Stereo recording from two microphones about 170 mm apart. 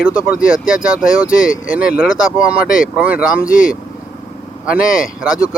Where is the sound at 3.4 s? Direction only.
55° left (ahead or behind).